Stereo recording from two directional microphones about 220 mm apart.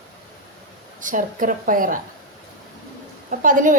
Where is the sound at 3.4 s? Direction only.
35° right (ahead or behind).